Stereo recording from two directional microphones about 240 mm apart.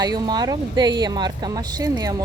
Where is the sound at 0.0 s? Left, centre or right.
Centre.